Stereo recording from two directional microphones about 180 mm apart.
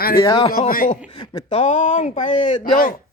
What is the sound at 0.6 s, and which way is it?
Speech, 45° left (ahead or behind).